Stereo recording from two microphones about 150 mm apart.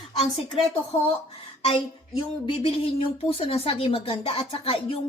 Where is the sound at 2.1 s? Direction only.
30° left (ahead or behind).